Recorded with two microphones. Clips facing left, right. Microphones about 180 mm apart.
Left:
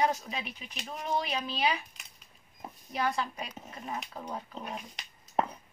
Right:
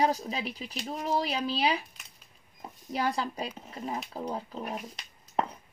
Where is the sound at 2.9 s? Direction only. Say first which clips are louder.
Right 2 dB; 35° right (ahead or behind).